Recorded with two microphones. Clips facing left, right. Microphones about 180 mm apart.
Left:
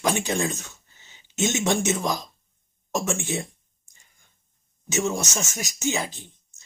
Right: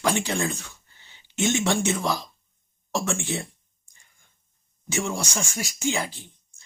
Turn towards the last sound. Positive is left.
turn(degrees=20)  # may be behind; listen again after turning